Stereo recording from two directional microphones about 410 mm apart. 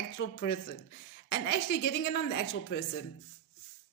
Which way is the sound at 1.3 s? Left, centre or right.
Left.